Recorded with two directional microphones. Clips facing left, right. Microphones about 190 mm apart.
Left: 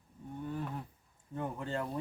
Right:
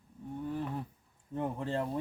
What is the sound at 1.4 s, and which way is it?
Speech, 30° right (ahead or behind).